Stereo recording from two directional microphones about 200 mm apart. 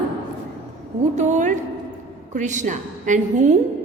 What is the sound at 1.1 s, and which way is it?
A woman's voice, 35° right (ahead or behind).